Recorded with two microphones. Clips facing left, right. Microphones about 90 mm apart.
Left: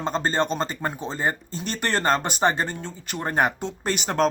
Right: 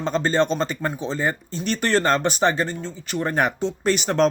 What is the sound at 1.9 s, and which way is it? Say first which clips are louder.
Speech: right 2 dB; 40° left (ahead or behind).